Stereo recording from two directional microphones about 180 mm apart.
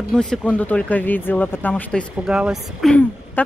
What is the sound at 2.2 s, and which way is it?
Speech, 5° right (ahead or behind).